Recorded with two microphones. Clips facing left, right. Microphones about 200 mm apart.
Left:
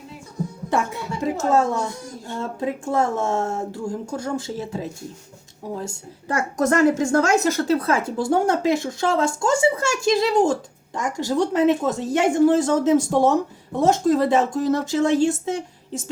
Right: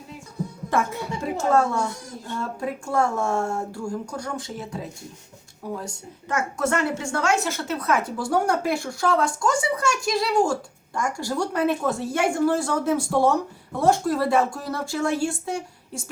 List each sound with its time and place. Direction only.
0.7 s music: 15° left (ahead or behind)
2.4 s a woman's voice: 20° left (ahead or behind)